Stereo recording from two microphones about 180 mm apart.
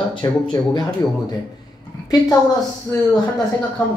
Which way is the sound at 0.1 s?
25° left (ahead or behind).